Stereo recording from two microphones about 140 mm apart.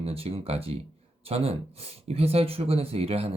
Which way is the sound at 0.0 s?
45° right (ahead or behind).